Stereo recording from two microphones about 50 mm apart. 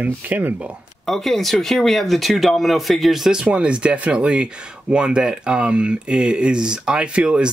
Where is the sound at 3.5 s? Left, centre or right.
Right.